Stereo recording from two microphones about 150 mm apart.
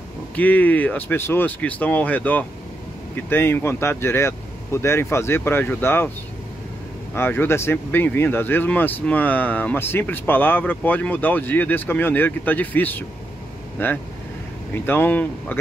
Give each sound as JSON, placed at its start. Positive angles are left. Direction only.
{"t": 0.4, "sound": "speech", "side_deg": 10}
{"t": 7.2, "sound": "speech", "side_deg": 15}